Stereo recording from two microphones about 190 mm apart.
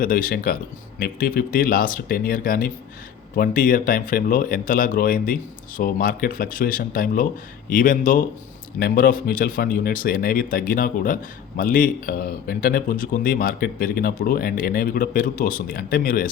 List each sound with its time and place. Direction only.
0.0 s speech: 50° left (ahead or behind)